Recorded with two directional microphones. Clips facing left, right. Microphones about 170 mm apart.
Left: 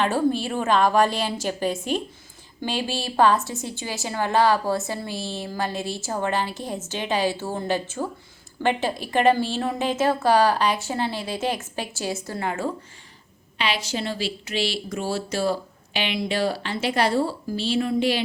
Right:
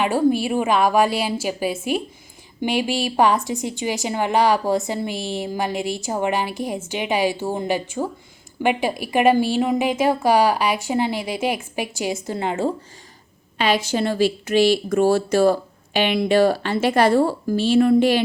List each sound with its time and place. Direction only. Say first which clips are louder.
0.0 s a woman's voice: right 3 dB; 10° right (ahead or behind)
13.6 s speech: right 7 dB; 50° right (ahead or behind)